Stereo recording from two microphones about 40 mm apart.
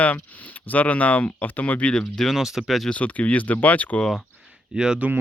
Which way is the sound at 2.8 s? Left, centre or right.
Left.